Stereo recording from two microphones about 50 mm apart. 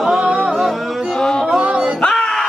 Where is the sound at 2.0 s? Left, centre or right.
Centre.